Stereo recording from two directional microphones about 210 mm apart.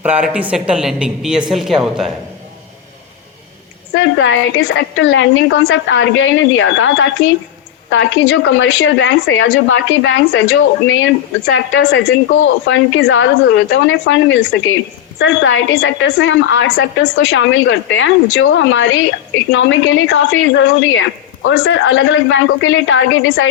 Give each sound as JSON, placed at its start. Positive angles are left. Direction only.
{"t": 0.3, "sound": "a woman's voice", "side_deg": -5}
{"t": 3.9, "sound": "speech", "side_deg": 60}